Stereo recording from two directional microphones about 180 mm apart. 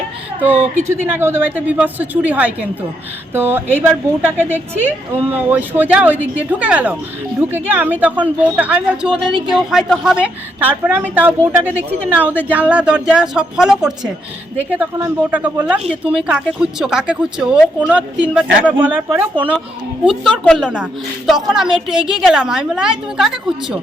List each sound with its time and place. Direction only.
0.3 s a woman's voice: 10° right (ahead or behind)
20.6 s a woman's voice: 5° right (ahead or behind)